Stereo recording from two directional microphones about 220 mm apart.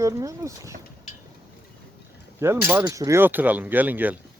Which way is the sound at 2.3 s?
10° right (ahead or behind).